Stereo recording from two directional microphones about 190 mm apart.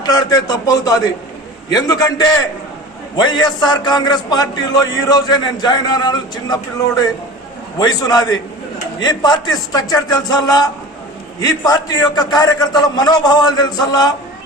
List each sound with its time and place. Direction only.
0.0 s a man's voice: 20° left (ahead or behind)